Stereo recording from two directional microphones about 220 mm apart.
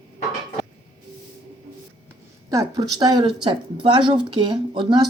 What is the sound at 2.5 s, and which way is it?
Speech, 15° right (ahead or behind).